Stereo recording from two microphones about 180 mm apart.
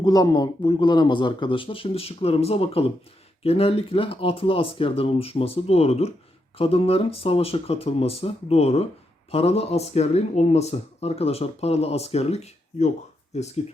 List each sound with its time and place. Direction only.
0.0 s speech: 20° left (ahead or behind); by 13.5 s 40° left (ahead or behind)